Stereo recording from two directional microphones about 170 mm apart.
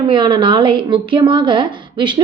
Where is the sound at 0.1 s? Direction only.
25° right (ahead or behind).